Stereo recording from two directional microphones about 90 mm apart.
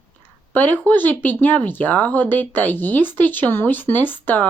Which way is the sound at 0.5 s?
20° left (ahead or behind).